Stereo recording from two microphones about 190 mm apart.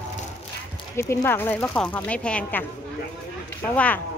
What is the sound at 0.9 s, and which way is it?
Speech, 15° left (ahead or behind).